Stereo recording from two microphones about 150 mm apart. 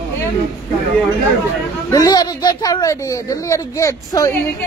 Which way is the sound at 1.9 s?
25° left (ahead or behind).